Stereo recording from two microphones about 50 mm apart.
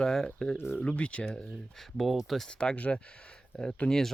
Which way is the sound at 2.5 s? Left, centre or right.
Centre.